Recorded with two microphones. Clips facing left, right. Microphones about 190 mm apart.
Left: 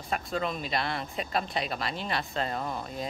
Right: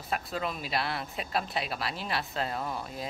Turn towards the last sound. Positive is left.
turn(degrees=-5)  # may be behind; listen again after turning